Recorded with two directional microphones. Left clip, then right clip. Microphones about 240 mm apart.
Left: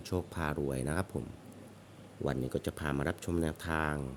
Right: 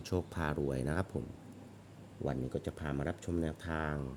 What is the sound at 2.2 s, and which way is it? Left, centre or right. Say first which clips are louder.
Speech: left 3 dB; centre.